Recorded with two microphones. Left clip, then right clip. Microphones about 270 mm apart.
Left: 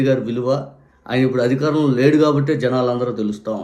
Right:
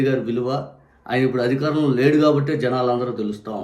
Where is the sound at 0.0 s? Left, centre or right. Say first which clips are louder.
Left 3 dB; centre.